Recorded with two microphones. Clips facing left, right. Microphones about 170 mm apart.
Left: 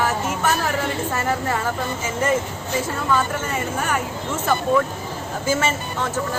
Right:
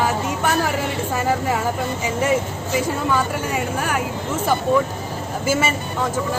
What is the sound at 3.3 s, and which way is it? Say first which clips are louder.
Speech: right 2 dB; 10° right (ahead or behind).